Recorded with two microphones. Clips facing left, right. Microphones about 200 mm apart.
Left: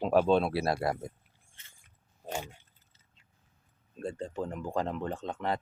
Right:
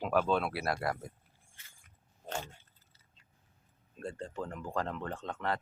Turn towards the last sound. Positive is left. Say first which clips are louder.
# left 3 dB
turn(degrees=15)  # may be behind; listen again after turning